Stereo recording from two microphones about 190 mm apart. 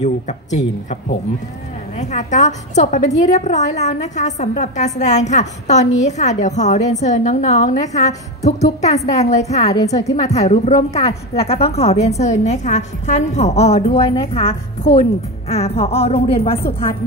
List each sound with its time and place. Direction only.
0.0 s a woman's voice: 40° left (ahead or behind)
2.0 s a woman's voice: 40° left (ahead or behind)